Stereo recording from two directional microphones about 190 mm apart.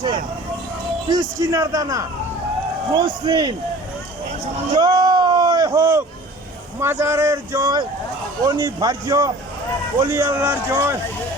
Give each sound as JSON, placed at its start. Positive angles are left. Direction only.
{"t": 1.0, "sound": "speech", "side_deg": -20}
{"t": 4.8, "sound": "speech", "side_deg": -20}